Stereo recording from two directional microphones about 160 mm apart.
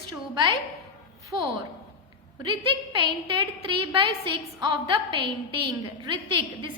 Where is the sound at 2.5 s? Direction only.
30° right (ahead or behind).